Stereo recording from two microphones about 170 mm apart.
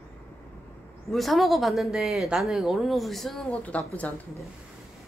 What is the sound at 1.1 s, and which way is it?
A man's voice, centre (ahead or behind).